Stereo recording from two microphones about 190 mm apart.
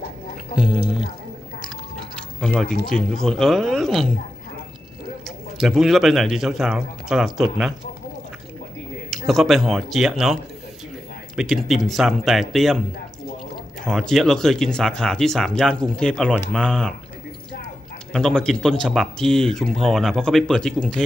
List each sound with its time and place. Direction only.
2.1 s music: 5° left (ahead or behind)
2.9 s speech: centre (ahead or behind)
5.6 s speech: centre (ahead or behind)
9.1 s speech: centre (ahead or behind)
13.8 s speech: centre (ahead or behind)
18.1 s speech: 5° left (ahead or behind)